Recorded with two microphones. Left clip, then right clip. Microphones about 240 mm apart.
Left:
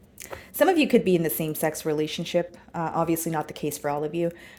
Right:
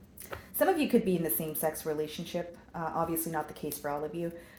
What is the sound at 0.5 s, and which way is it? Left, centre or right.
A woman's voice, left.